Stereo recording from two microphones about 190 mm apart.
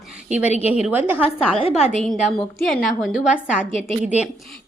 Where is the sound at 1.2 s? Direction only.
30° left (ahead or behind).